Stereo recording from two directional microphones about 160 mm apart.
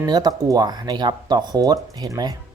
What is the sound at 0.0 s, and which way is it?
Speech, 25° right (ahead or behind).